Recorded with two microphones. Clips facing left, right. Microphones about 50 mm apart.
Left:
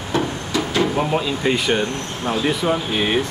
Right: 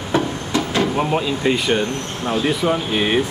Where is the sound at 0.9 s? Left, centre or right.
Centre.